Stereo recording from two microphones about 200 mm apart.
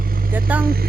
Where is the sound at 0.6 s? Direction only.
50° right (ahead or behind).